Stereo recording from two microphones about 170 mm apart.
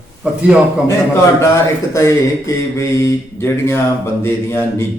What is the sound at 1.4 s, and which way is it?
Speech, 15° left (ahead or behind).